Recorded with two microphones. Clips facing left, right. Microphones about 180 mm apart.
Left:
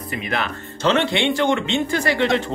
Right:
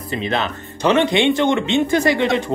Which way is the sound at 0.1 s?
25° right (ahead or behind).